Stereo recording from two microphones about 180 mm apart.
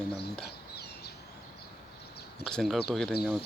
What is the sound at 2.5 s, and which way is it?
Speech, centre (ahead or behind).